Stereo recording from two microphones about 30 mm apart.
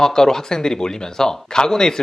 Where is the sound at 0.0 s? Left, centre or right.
Centre.